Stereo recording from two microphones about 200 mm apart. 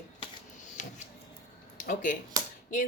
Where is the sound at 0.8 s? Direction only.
35° left (ahead or behind).